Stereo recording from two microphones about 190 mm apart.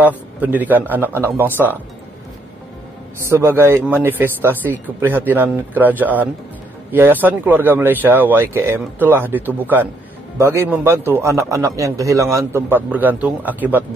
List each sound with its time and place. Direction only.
0.0 s a man's voice: 10° right (ahead or behind)
3.2 s a man's voice: 15° right (ahead or behind)